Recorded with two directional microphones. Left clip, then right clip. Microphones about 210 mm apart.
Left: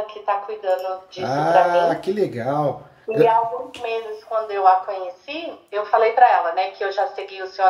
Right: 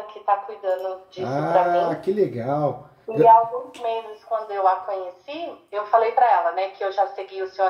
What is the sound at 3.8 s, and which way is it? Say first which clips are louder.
A woman's voice: even; 25° left (ahead or behind).